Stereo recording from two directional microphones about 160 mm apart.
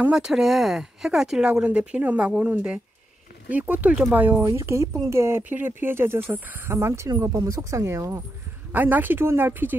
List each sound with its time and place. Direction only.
0.0 s speech: 5° right (ahead or behind)